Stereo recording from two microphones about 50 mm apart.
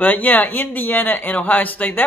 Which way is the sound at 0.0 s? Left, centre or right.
Left.